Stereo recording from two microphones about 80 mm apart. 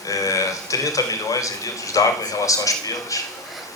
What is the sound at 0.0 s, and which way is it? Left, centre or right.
A man's voice, left.